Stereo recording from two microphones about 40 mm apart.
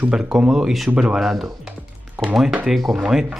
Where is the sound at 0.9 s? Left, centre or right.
Right.